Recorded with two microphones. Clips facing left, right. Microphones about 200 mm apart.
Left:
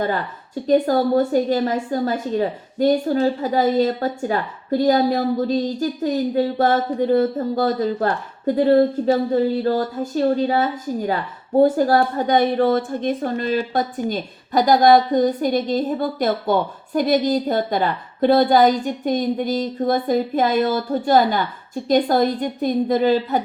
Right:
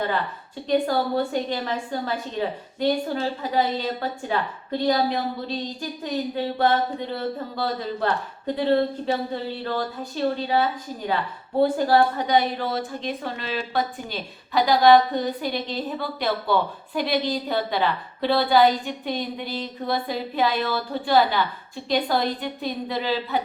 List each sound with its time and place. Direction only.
0.7 s speech: 40° left (ahead or behind)